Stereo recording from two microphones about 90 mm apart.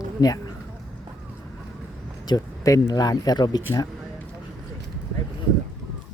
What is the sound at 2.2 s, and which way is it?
Speech, 45° left (ahead or behind).